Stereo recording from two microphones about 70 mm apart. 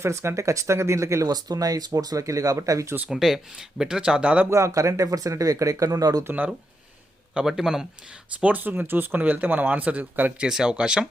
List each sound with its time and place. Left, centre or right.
0.0 s speech: right
1.3 s speech: right
3.1 s speech: centre
4.4 s speech: right
7.3 s speech: centre
8.4 s speech: right
10.4 s speech: centre